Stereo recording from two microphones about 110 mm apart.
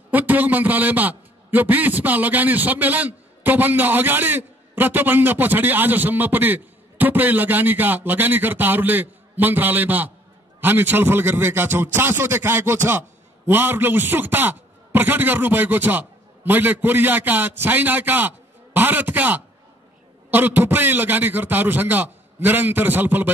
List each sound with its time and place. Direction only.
0.1 s a man's voice: 15° right (ahead or behind)